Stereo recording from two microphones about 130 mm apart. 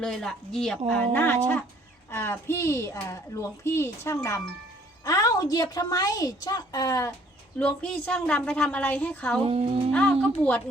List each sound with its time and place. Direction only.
0.0 s a woman's voice: 5° left (ahead or behind); by 7.1 s 30° left (ahead or behind)
7.6 s a woman's voice: 10° left (ahead or behind)
9.4 s speech: 45° right (ahead or behind)
9.9 s a woman's voice: 10° left (ahead or behind)